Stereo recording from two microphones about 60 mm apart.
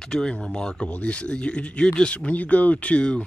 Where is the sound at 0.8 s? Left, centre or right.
Left.